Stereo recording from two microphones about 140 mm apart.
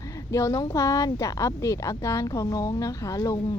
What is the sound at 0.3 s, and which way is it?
A woman's voice, 20° left (ahead or behind).